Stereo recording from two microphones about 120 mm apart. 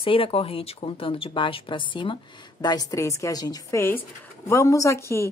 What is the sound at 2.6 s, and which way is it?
A woman's voice, 35° left (ahead or behind).